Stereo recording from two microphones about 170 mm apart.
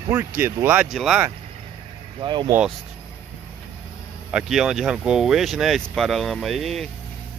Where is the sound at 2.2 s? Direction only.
25° right (ahead or behind).